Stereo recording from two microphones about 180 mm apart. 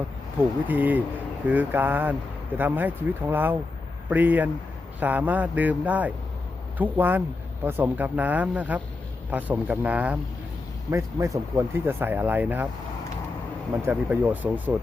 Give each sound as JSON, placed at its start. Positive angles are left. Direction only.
{"t": 0.7, "sound": "speech", "side_deg": -10}
{"t": 13.8, "sound": "speech", "side_deg": -10}